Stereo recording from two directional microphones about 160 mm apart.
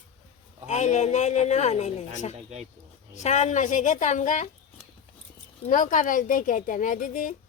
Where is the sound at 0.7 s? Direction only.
45° left (ahead or behind).